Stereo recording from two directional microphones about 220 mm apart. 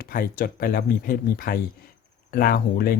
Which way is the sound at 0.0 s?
40° left (ahead or behind).